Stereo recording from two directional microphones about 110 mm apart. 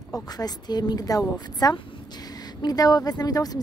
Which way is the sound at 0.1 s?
35° left (ahead or behind).